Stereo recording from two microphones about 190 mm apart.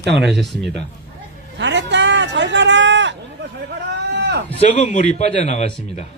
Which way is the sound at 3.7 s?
60° right (ahead or behind).